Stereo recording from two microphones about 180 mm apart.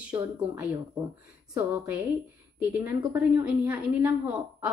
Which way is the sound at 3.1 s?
10° right (ahead or behind).